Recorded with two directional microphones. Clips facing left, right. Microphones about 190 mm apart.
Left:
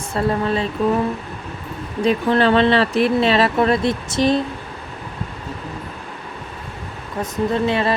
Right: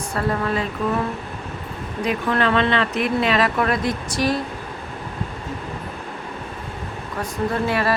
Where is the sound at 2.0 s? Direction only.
30° left (ahead or behind).